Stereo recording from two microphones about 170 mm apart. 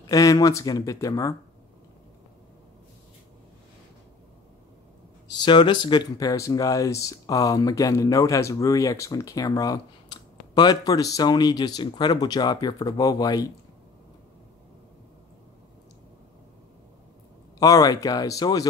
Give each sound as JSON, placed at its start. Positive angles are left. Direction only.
{"t": 0.0, "sound": "speech", "side_deg": 20}
{"t": 5.3, "sound": "speech", "side_deg": 25}
{"t": 17.6, "sound": "speech", "side_deg": 20}